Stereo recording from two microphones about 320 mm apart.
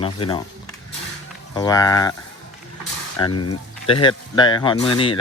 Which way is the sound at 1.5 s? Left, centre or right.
Centre.